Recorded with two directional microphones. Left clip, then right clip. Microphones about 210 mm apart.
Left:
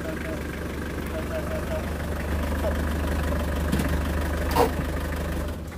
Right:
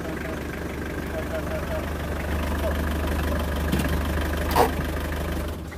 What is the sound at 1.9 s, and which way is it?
Vehicle, 30° right (ahead or behind).